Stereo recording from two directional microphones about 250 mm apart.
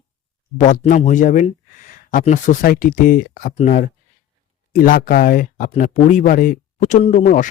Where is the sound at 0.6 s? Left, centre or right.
Left.